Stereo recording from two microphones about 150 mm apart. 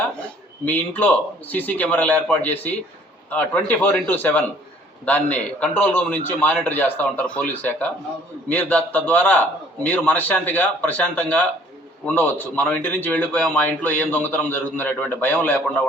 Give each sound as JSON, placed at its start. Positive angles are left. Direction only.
{"t": 0.7, "sound": "a man's voice", "side_deg": 10}